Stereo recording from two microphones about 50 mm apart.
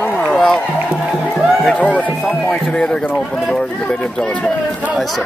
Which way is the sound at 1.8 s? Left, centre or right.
Left.